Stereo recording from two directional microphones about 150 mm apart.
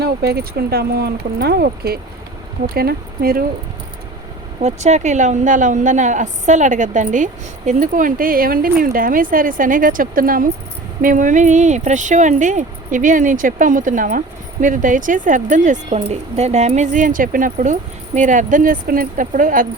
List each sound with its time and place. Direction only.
0.0 s speech: 90° right
4.6 s speech: 50° right (ahead or behind); by 19.6 s 65° right (ahead or behind)